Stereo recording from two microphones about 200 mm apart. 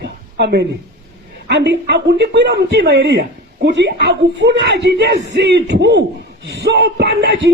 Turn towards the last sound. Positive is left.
turn(degrees=-55)  # may be behind; listen again after turning